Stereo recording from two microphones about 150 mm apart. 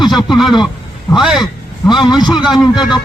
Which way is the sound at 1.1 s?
5° right (ahead or behind).